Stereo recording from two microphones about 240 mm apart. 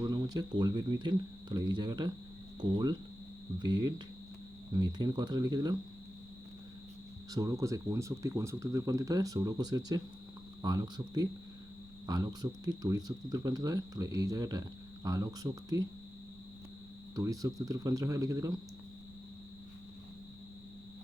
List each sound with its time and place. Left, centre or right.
0.0 s speech: centre
7.3 s speech: centre
17.2 s speech: centre